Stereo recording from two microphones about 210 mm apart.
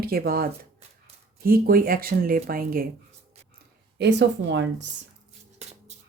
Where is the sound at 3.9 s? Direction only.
55° right (ahead or behind).